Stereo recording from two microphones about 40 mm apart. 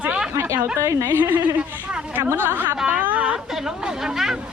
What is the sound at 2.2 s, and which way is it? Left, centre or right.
Speech, right.